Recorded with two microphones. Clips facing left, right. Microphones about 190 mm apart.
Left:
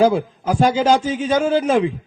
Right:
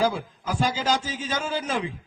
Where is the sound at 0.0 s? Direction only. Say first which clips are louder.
Left 9 dB; 55° left (ahead or behind).